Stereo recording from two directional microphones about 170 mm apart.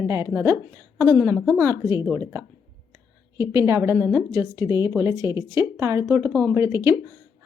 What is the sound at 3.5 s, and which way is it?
A woman's voice, 15° right (ahead or behind).